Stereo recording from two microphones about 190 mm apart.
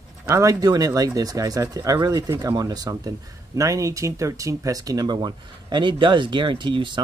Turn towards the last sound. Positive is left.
turn(degrees=-25)  # may be behind; listen again after turning